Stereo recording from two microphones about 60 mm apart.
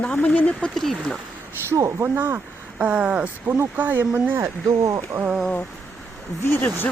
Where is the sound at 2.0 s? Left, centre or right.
Right.